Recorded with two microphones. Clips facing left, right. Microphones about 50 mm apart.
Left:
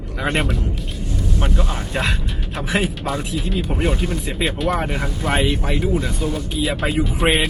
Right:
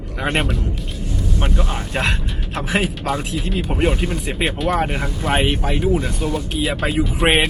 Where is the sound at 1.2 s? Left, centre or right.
Centre.